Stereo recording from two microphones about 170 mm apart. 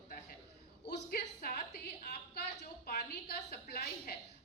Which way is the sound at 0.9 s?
65° left (ahead or behind).